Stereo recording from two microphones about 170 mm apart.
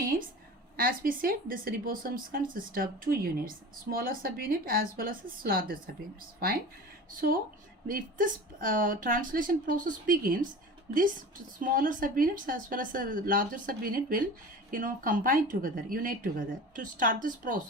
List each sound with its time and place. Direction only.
0.0 s a sound: 60° right (ahead or behind)
0.8 s a woman's voice: 60° right (ahead or behind)
7.9 s a woman's voice: 55° right (ahead or behind)
11.6 s a woman's voice: 55° right (ahead or behind)